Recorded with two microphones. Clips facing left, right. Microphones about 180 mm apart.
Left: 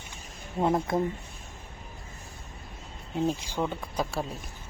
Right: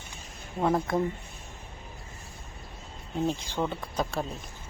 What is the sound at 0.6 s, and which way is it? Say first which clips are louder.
Speech: even; 20° left (ahead or behind).